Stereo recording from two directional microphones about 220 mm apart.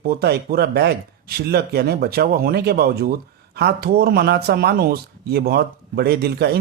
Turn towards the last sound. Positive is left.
turn(degrees=-45)  # may be behind; listen again after turning